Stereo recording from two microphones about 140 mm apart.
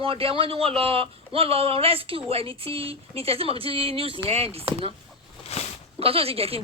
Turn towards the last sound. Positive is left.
turn(degrees=-45)  # may be behind; listen again after turning